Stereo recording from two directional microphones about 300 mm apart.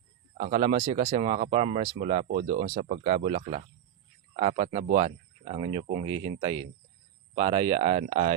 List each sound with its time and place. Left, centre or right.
0.3 s speech: right